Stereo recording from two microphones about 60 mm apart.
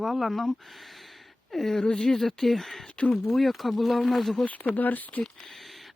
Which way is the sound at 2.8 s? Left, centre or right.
Left.